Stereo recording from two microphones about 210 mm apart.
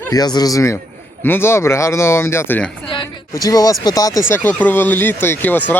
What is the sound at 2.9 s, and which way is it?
Speech, 15° left (ahead or behind).